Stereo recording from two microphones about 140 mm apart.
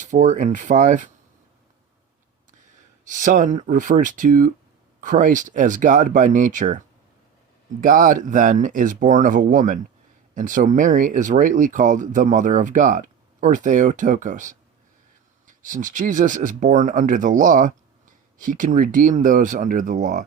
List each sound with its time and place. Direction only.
0.0 s speech: 60° right (ahead or behind)
3.1 s speech: 65° right (ahead or behind)
7.8 s speech: 70° right (ahead or behind)